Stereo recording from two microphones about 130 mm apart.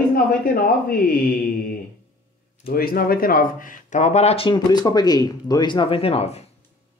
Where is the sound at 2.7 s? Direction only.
90° left; by 4.5 s 55° left (ahead or behind).